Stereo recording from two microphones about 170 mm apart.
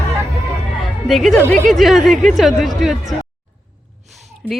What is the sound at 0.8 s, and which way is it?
Music, centre (ahead or behind).